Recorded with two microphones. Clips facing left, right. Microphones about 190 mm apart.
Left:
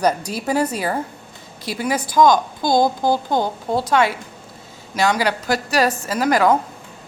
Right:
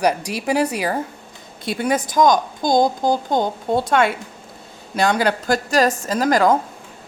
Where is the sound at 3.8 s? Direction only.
55° right (ahead or behind).